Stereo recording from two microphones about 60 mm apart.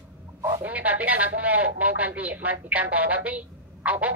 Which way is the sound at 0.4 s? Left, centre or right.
Right.